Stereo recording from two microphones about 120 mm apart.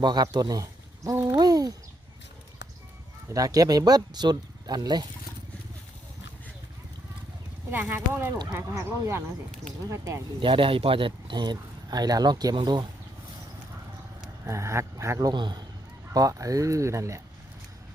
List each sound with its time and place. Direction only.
0.0 s a sound: 35° right (ahead or behind)
3.3 s speech: 30° right (ahead or behind)
7.7 s speech: 15° right (ahead or behind)
10.4 s speech: 45° right (ahead or behind)
14.4 s speech: 25° right (ahead or behind)
15.3 s speech: 35° right (ahead or behind)